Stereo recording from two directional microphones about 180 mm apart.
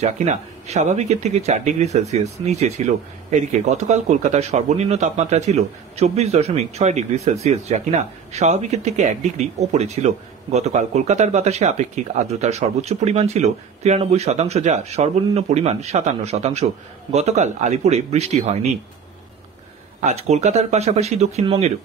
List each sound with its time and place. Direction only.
0.0 s speech: 40° right (ahead or behind)
20.0 s speech: 40° right (ahead or behind)